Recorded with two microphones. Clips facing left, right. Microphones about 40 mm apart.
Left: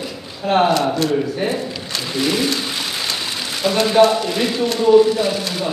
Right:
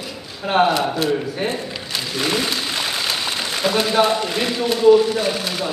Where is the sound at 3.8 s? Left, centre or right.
Centre.